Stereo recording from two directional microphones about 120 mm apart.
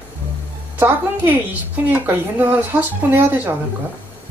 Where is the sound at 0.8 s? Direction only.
15° right (ahead or behind).